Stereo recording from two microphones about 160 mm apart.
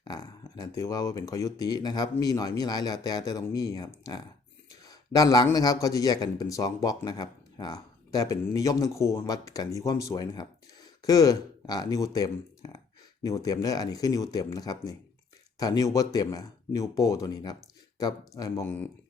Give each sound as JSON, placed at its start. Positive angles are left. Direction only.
{"t": 0.0, "sound": "speech", "side_deg": 25}